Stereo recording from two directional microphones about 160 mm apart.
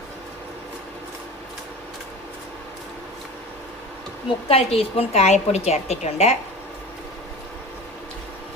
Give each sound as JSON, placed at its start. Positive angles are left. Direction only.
{"t": 4.4, "sound": "a woman's voice", "side_deg": 40}